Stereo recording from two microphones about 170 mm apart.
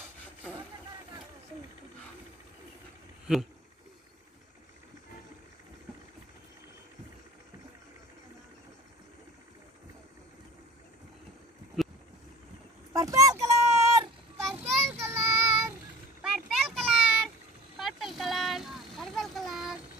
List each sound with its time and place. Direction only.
3.3 s speech: 5° right (ahead or behind)
12.9 s a sound: 20° right (ahead or behind)
14.4 s child singing: centre (ahead or behind)
15.0 s child singing: 15° right (ahead or behind)
16.2 s a sound: 5° right (ahead or behind)
17.7 s vehicle: centre (ahead or behind)